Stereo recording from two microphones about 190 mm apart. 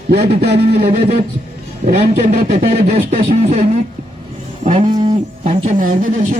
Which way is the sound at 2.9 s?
30° right (ahead or behind).